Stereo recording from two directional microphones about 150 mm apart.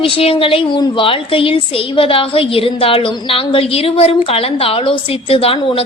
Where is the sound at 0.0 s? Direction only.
40° left (ahead or behind).